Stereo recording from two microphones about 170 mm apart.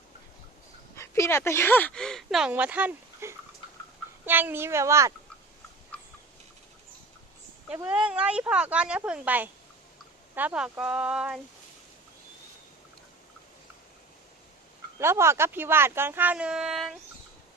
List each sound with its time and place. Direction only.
0.9 s speech: 15° left (ahead or behind); by 5.1 s 15° right (ahead or behind)
7.7 s speech: 5° right (ahead or behind)
14.9 s speech: 15° right (ahead or behind)